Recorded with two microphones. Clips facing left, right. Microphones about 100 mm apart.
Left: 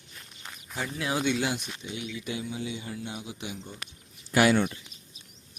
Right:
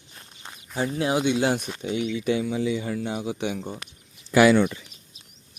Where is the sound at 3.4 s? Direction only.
65° right (ahead or behind).